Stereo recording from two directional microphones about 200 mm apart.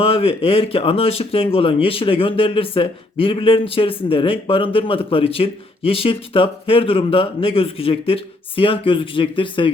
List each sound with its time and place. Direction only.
0.0 s speech: 30° left (ahead or behind)